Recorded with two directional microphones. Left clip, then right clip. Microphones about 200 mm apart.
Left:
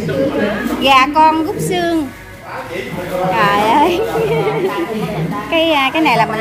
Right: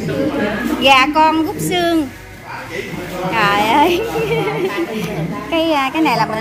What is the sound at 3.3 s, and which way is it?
A woman's voice, 10° right (ahead or behind).